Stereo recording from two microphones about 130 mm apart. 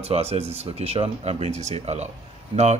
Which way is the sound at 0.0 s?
50° right (ahead or behind).